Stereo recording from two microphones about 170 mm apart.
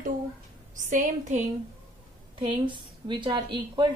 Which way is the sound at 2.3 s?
30° right (ahead or behind).